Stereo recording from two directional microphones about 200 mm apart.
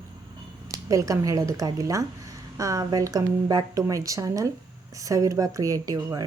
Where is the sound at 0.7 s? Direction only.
15° right (ahead or behind).